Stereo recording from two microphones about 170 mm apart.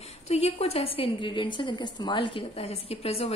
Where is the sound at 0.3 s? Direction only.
35° left (ahead or behind).